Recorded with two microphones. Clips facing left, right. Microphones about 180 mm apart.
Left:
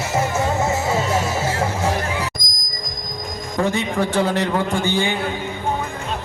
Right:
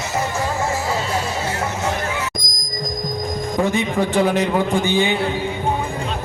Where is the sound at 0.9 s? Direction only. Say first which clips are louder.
Left 2 dB; 25° left (ahead or behind).